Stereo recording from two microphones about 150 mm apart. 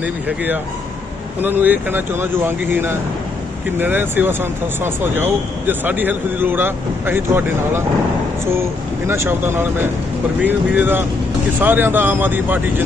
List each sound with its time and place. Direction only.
1.4 s speech: 10° right (ahead or behind)